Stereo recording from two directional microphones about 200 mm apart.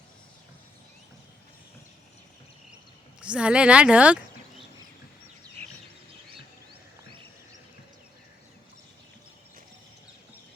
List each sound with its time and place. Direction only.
3.2 s speech: 5° right (ahead or behind)